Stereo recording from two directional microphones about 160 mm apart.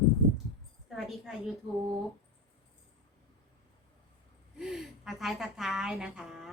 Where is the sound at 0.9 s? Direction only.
Centre (ahead or behind).